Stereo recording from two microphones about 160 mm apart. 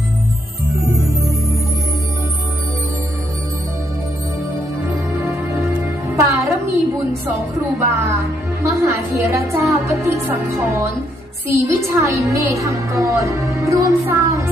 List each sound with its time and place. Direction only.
4.8 s music: 15° right (ahead or behind)
7.8 s a woman's voice: 20° right (ahead or behind)